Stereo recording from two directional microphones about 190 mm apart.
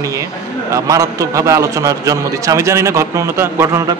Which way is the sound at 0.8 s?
20° right (ahead or behind).